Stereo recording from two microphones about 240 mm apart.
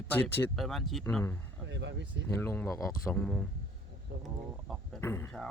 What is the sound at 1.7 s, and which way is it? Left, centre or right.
Speech, right.